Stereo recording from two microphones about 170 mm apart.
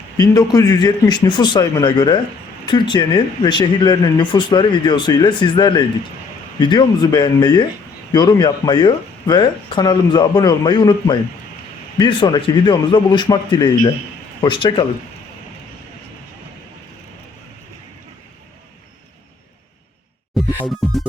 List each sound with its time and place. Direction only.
0.2 s speech: 20° left (ahead or behind)
20.7 s music: centre (ahead or behind)